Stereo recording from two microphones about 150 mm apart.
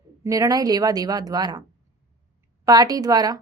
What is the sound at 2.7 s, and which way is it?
Speech, 25° right (ahead or behind).